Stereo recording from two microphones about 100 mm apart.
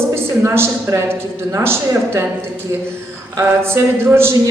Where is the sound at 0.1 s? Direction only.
25° right (ahead or behind).